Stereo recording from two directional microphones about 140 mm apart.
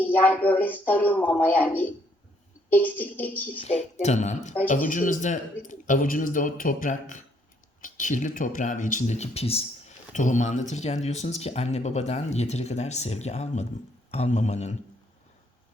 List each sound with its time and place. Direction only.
0.0 s speech: 10° left (ahead or behind)
3.5 s speech: 45° left (ahead or behind)